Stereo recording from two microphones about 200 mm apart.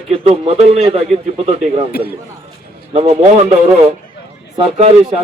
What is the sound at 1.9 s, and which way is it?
Speech, 50° left (ahead or behind).